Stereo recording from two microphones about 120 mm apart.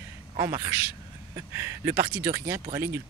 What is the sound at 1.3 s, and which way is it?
Speech, 20° right (ahead or behind).